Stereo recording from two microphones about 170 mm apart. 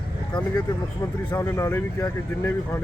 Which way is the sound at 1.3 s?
15° left (ahead or behind).